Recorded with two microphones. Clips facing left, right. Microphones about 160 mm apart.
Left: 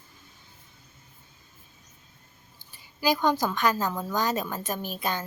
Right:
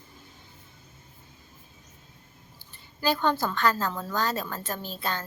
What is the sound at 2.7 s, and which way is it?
A woman's voice, 10° left (ahead or behind).